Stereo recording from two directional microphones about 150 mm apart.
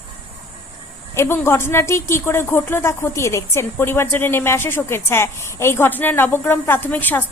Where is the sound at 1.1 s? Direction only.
15° left (ahead or behind).